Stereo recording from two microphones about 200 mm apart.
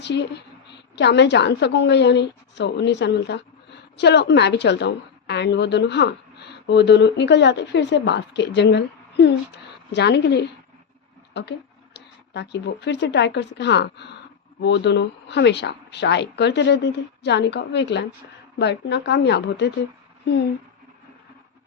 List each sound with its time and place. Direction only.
0.0 s a woman's voice: 60° left (ahead or behind)